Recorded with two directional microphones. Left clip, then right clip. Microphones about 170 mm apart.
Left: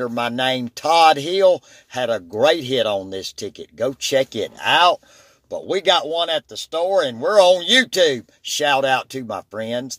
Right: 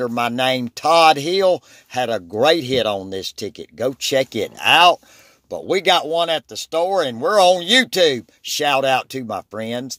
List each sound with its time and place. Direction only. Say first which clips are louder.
0.0 s speech: right 2 dB; 30° right (ahead or behind)